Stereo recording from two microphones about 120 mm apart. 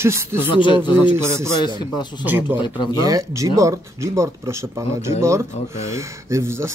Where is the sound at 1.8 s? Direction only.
40° left (ahead or behind).